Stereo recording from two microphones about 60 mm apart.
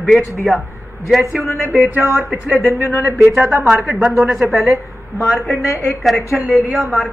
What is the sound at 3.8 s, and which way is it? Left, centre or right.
A woman's voice, centre.